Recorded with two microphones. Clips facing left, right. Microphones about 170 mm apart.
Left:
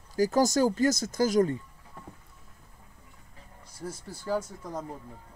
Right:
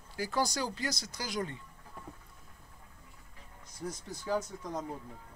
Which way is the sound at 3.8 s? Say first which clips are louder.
Left 1 dB; 5° left (ahead or behind).